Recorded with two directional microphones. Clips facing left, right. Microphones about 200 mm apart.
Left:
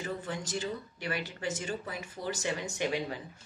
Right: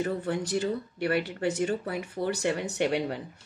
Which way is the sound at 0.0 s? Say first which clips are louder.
Right 8 dB; 60° right (ahead or behind).